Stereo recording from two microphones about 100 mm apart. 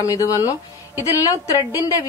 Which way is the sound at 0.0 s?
35° left (ahead or behind).